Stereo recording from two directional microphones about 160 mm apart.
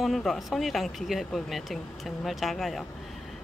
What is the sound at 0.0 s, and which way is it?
Speech, centre (ahead or behind).